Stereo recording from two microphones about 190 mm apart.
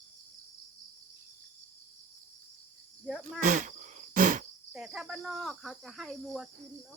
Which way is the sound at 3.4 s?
40° right (ahead or behind).